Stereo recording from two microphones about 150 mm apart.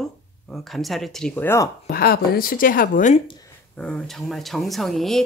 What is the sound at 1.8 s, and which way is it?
Speech, 90° left.